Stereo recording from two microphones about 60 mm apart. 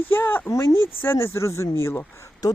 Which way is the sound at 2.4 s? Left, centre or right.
Left.